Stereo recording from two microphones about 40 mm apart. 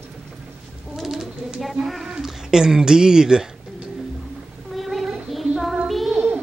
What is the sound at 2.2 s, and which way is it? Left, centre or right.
Speech, centre.